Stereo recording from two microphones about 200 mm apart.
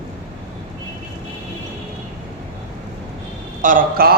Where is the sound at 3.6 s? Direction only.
45° right (ahead or behind).